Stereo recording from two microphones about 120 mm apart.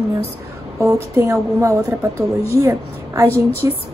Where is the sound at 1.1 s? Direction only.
25° right (ahead or behind).